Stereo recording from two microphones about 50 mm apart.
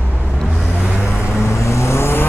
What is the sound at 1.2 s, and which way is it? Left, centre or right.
Vehicle, left.